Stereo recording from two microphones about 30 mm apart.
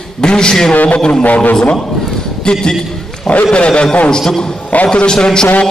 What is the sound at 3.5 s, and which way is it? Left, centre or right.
Speech, left.